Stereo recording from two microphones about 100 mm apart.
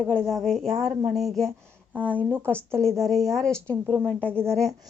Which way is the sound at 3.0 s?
Centre (ahead or behind).